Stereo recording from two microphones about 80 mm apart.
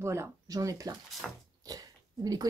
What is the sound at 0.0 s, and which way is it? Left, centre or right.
Speech, right.